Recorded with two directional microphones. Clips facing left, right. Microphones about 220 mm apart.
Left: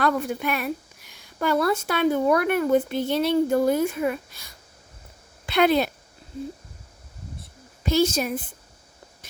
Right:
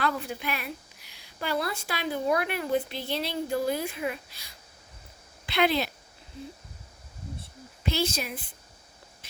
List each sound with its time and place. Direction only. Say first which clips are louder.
0.0 s a woman's voice: left 7 dB; 50° left (ahead or behind)
7.9 s a woman's voice: left 8 dB; 45° left (ahead or behind)